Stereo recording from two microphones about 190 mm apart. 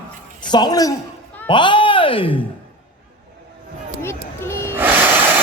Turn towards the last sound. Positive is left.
turn(degrees=-10)  # may be behind; listen again after turning